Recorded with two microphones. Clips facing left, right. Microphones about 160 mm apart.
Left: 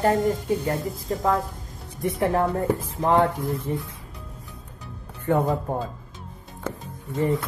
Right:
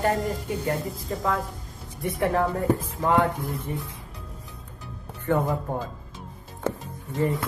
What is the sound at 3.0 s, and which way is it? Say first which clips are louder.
Speech: left 4 dB; 20° left (ahead or behind).